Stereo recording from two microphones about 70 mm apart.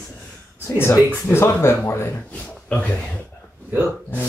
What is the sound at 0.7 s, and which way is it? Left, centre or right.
Speech, left.